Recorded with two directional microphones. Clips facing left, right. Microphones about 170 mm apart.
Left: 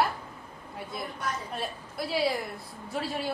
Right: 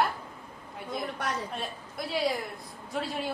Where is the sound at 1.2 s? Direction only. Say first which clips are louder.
Even; 75° right (ahead or behind).